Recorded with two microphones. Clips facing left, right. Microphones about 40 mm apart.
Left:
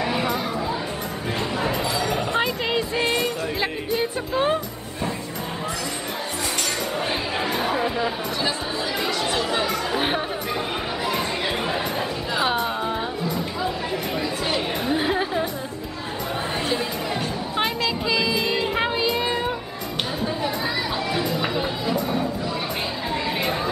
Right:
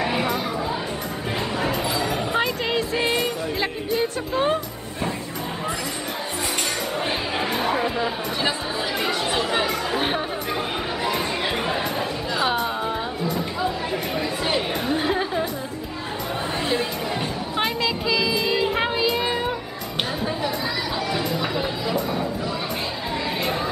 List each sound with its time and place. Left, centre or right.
0.0 s a sound: centre
1.6 s music: centre
7.0 s chatter: centre
9.7 s chatter: centre
11.1 s music: centre
14.9 s music: centre
18.0 s child singing: centre
21.1 s music: centre